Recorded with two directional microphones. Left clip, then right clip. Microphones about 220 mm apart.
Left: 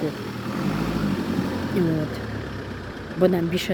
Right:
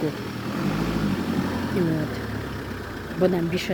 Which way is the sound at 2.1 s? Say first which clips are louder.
Even; 40° right (ahead or behind).